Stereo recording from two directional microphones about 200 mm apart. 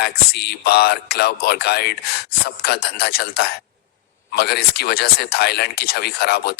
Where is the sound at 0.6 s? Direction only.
50° left (ahead or behind).